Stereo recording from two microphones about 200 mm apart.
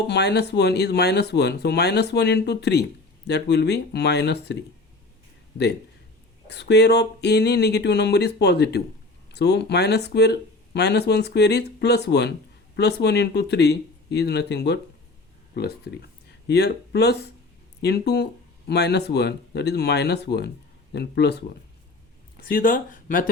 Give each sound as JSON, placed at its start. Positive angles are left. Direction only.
{"t": 0.0, "sound": "speech", "side_deg": 55}
{"t": 6.5, "sound": "speech", "side_deg": 60}
{"t": 22.4, "sound": "speech", "side_deg": 45}